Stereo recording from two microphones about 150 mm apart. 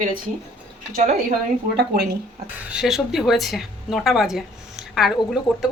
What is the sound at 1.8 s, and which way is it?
Speech, 90° right.